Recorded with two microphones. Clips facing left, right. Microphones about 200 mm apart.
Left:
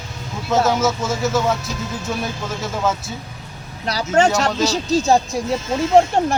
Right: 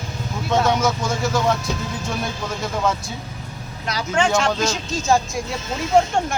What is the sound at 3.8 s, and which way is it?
Speech, 40° left (ahead or behind).